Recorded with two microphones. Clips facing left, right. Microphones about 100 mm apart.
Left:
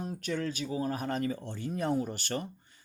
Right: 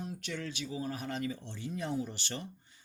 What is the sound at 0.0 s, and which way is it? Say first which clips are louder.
Speech: left 6 dB; 45° left (ahead or behind).